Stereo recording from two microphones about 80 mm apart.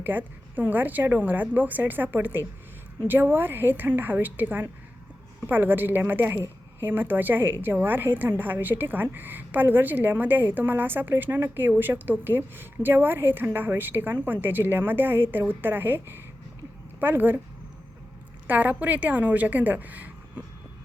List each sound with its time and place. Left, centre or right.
0.0 s a woman's voice: right
18.4 s a woman's voice: centre